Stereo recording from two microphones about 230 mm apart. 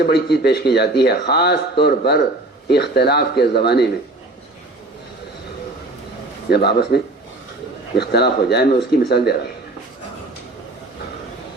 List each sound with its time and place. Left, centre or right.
0.0 s a man's voice: left
6.5 s a man's voice: left